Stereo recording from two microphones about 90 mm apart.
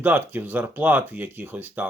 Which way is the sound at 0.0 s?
20° right (ahead or behind).